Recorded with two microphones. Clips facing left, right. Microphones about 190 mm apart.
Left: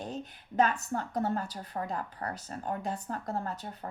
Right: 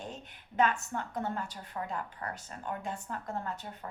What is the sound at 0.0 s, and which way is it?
A woman's voice, 40° left (ahead or behind).